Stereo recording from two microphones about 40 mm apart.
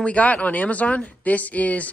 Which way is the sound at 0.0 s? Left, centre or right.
Left.